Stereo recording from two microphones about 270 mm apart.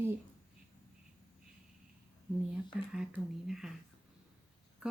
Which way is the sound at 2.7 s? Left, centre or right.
Centre.